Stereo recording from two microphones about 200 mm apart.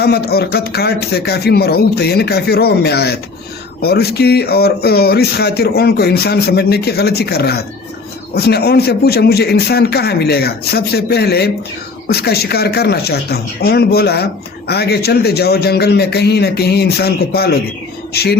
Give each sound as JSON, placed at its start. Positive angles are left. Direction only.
{"t": 0.0, "sound": "speech", "side_deg": 50}